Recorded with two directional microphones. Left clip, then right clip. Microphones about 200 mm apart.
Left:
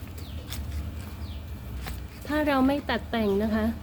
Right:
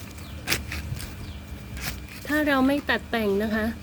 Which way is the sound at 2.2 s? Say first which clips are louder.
Right 2 dB; 15° right (ahead or behind).